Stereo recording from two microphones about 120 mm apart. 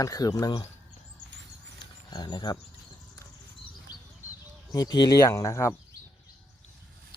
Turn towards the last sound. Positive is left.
turn(degrees=25)  # may be behind; listen again after turning